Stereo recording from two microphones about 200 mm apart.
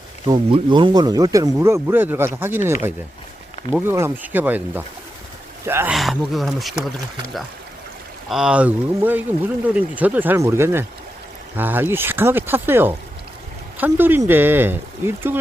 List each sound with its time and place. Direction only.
0.3 s speech: 25° right (ahead or behind)
3.7 s speech: 10° right (ahead or behind)
8.3 s speech: 5° right (ahead or behind)